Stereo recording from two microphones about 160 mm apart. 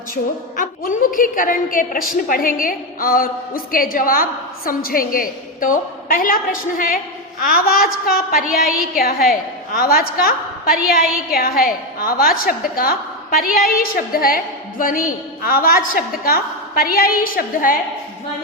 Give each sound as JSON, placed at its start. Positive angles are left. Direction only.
{"t": 0.5, "sound": "a woman's voice", "side_deg": 55}